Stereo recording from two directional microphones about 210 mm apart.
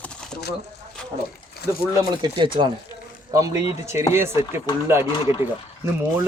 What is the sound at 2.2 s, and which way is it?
Speech, 20° right (ahead or behind).